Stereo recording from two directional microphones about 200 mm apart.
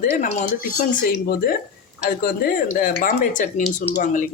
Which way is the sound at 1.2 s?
50° left (ahead or behind).